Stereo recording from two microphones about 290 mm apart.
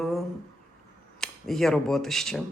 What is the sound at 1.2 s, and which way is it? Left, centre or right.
Speech, centre.